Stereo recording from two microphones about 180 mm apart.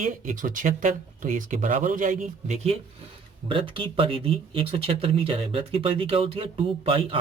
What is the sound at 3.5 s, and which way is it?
Speech, 30° right (ahead or behind).